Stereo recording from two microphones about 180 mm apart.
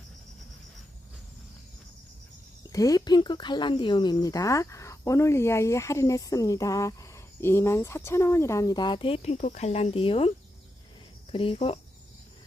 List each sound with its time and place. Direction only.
2.6 s speech: 20° left (ahead or behind)